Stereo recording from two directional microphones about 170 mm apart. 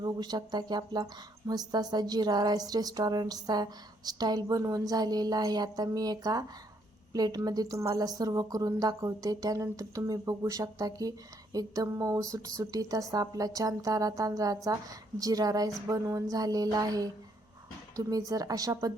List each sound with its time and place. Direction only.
0.0 s speech: 25° right (ahead or behind)